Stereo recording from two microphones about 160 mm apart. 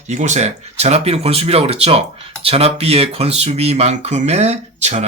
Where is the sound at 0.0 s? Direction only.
45° right (ahead or behind).